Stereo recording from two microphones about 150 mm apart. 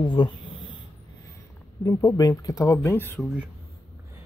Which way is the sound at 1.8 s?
25° left (ahead or behind).